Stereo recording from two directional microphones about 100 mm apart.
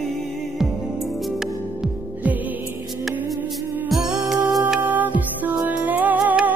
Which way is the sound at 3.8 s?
Centre (ahead or behind).